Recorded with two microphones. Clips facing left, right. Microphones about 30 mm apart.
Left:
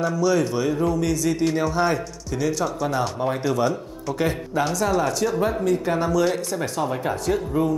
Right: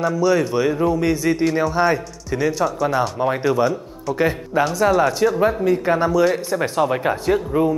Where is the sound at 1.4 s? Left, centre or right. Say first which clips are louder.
Right 3 dB; centre.